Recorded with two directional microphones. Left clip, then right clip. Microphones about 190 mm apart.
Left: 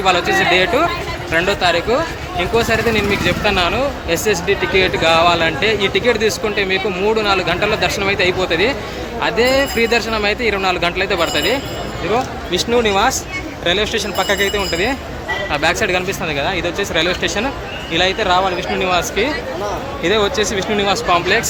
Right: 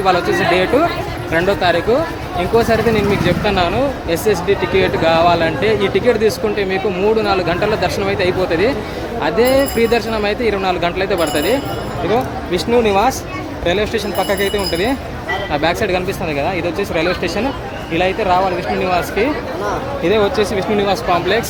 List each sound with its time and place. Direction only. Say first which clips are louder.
0.0 s speech: even; 5° right (ahead or behind)
17.9 s speech: even; centre (ahead or behind)